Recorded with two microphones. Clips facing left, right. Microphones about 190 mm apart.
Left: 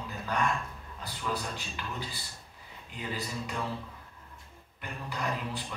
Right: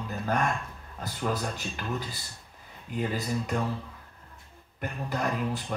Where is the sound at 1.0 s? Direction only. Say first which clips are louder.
Right 5 dB; 45° right (ahead or behind).